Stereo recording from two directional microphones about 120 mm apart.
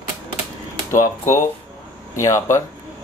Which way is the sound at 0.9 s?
25° left (ahead or behind).